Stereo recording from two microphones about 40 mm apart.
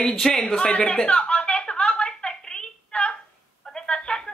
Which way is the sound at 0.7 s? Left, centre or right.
Left.